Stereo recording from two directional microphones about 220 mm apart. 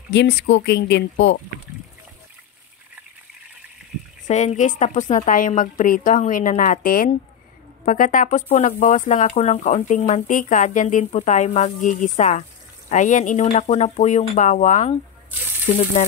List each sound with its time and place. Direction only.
0.1 s speech: 55° left (ahead or behind)
4.3 s speech: 30° left (ahead or behind)